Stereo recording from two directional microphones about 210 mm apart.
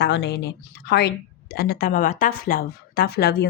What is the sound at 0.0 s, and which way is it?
A woman's voice, 55° left (ahead or behind).